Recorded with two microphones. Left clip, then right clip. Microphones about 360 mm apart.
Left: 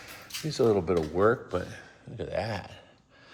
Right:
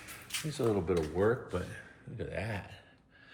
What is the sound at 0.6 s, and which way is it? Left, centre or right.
Speech, left.